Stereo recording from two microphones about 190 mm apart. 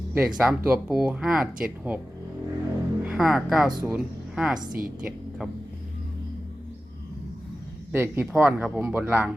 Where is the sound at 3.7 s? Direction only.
20° right (ahead or behind).